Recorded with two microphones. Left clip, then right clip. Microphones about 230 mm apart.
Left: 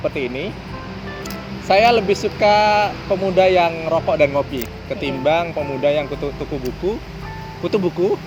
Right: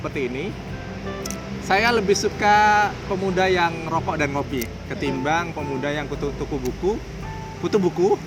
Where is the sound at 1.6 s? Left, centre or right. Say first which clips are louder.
Left 5 dB; centre.